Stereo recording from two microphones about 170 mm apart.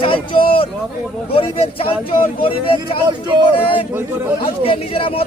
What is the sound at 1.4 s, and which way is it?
Speech, 30° left (ahead or behind).